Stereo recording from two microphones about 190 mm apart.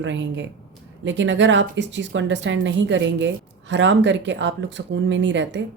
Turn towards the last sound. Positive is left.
turn(degrees=-70)  # may be behind; listen again after turning